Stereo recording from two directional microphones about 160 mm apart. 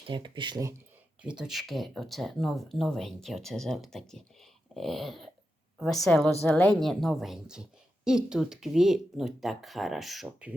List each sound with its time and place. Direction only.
0.1 s speech: 30° right (ahead or behind)
1.2 s a woman's voice: 5° right (ahead or behind)